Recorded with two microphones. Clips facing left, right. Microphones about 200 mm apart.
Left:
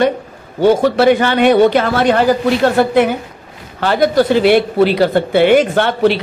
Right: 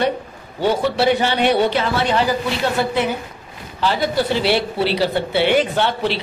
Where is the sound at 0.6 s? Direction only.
45° left (ahead or behind).